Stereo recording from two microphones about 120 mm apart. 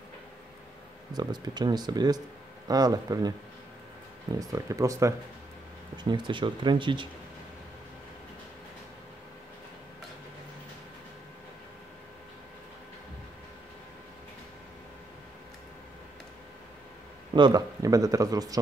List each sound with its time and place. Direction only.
1.1 s speech: 35° right (ahead or behind)
4.4 s speech: 30° right (ahead or behind)
6.0 s speech: 40° right (ahead or behind)
17.3 s speech: 35° right (ahead or behind)